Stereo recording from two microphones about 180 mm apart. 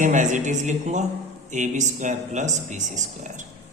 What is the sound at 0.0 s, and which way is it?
A man's voice, 45° right (ahead or behind).